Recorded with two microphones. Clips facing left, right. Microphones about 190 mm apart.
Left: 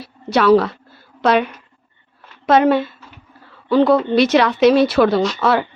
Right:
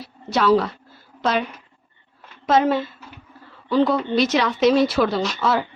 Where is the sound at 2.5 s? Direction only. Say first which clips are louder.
Left 5 dB; 65° left (ahead or behind).